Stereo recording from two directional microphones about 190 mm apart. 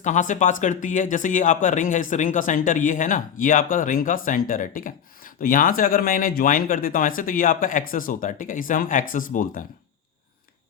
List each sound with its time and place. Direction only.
0.0 s speech: 40° left (ahead or behind)